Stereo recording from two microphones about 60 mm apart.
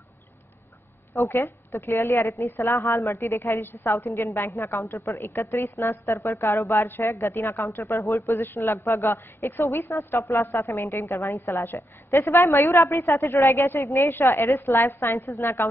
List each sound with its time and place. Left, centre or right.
1.1 s a woman's voice: left
4.9 s a woman's voice: left
6.6 s a woman's voice: left
6.9 s a woman's voice: left